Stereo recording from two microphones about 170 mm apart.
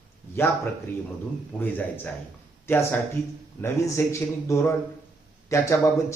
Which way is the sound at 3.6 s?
15° left (ahead or behind).